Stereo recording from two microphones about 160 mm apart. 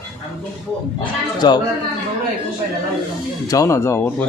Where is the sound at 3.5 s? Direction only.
20° left (ahead or behind).